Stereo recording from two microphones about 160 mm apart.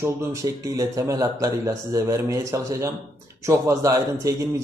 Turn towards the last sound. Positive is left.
turn(degrees=-20)  # may be behind; listen again after turning